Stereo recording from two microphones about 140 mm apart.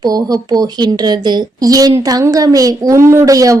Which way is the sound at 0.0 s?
30° right (ahead or behind).